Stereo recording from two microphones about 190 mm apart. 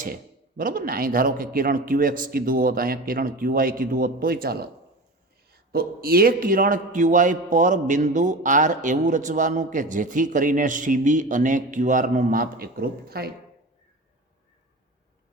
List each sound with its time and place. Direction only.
0.0 s a man's voice: 50° right (ahead or behind)